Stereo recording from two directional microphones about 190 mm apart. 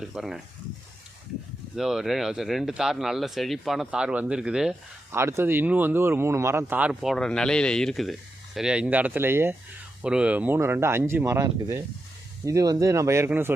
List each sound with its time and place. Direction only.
0.0 s speech: centre (ahead or behind)
1.7 s speech: 5° right (ahead or behind)